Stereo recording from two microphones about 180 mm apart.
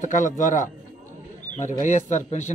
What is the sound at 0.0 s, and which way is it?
A man's voice, 45° left (ahead or behind).